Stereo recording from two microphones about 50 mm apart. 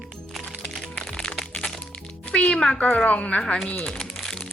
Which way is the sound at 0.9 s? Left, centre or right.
Centre.